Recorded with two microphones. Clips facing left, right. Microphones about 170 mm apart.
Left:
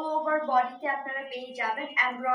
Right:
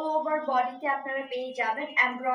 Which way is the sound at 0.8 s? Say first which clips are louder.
Right 2 dB; 20° right (ahead or behind).